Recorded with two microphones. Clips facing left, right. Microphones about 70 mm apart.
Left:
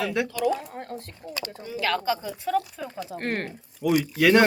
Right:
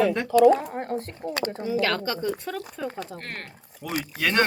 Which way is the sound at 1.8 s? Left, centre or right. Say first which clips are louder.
Left 3 dB; centre.